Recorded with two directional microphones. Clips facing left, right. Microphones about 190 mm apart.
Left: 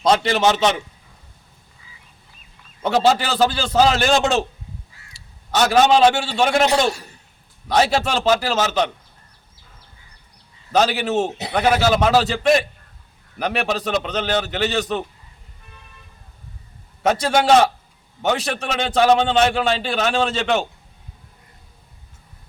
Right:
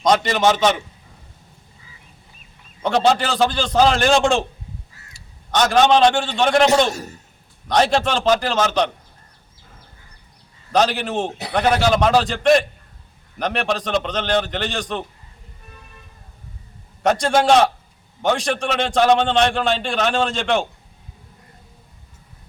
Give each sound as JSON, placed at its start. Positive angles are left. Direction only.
{"t": 0.0, "sound": "a man's voice", "side_deg": 5}
{"t": 2.8, "sound": "a man's voice", "side_deg": 5}
{"t": 5.2, "sound": "crow", "side_deg": -50}
{"t": 5.5, "sound": "a man's voice", "side_deg": 5}
{"t": 6.9, "sound": "a man's voice", "side_deg": -45}
{"t": 7.7, "sound": "a man's voice", "side_deg": 5}
{"t": 10.7, "sound": "a man's voice", "side_deg": 5}
{"t": 17.0, "sound": "a man's voice", "side_deg": 5}